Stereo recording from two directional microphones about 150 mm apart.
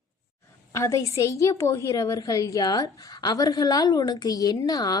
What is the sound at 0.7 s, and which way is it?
A woman's voice, 20° left (ahead or behind).